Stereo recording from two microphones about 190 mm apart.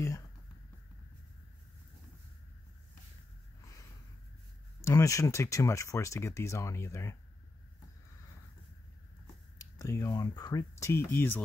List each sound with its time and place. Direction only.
4.8 s speech: 15° left (ahead or behind)
9.8 s speech: 15° left (ahead or behind)